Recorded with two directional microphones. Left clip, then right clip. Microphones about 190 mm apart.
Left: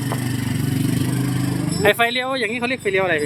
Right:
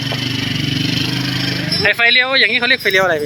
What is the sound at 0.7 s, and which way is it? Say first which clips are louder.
Vehicle: right 4 dB; 35° left (ahead or behind).